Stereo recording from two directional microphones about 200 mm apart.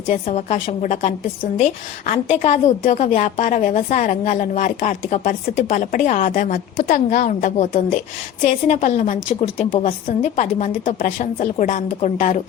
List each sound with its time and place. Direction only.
0.1 s a woman's voice: 35° left (ahead or behind)